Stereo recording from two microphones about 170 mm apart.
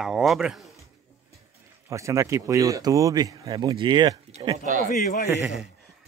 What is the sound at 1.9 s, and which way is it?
Speech, 15° right (ahead or behind).